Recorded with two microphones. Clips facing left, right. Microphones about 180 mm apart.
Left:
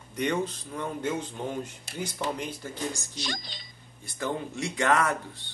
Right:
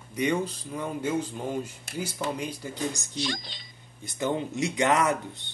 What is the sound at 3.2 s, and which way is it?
Speech, 45° left (ahead or behind).